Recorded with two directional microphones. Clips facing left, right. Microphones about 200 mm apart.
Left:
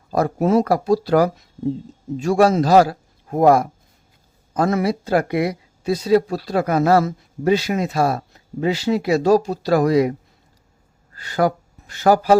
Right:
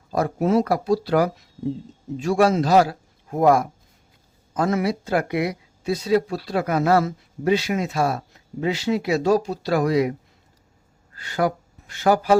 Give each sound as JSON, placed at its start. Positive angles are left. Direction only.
{"t": 0.1, "sound": "speech", "side_deg": 40}
{"t": 11.2, "sound": "speech", "side_deg": 40}